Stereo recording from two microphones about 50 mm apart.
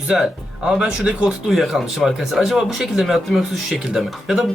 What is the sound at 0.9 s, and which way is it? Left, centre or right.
Speech, centre.